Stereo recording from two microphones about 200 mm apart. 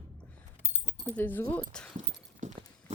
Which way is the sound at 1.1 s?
10° left (ahead or behind).